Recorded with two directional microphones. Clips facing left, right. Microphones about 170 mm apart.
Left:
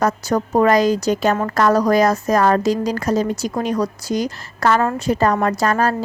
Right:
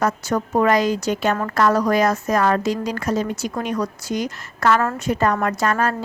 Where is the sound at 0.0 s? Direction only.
40° left (ahead or behind).